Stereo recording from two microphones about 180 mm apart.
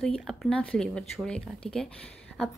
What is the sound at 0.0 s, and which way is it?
A woman's voice, centre (ahead or behind).